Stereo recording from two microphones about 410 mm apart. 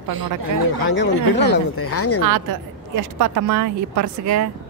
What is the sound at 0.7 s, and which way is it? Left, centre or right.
A man's voice, left.